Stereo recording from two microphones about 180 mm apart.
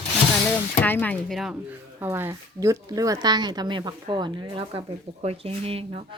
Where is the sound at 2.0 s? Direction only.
10° right (ahead or behind); by 6.0 s 30° right (ahead or behind).